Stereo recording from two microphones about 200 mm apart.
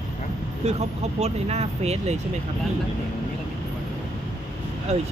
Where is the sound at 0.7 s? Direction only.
30° right (ahead or behind).